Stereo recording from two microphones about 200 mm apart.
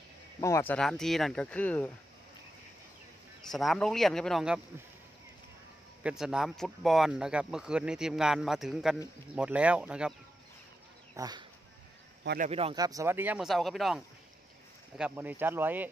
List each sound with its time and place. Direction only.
0.4 s speech: 15° left (ahead or behind)
3.4 s speech: centre (ahead or behind)
6.0 s speech: 5° right (ahead or behind)
11.1 s speech: 20° right (ahead or behind)
12.4 s speech: 30° right (ahead or behind)
12.8 s speech: 15° right (ahead or behind)